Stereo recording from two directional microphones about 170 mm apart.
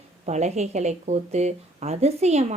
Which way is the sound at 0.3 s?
40° right (ahead or behind).